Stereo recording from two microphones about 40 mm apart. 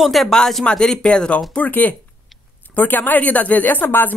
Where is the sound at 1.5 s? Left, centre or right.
Left.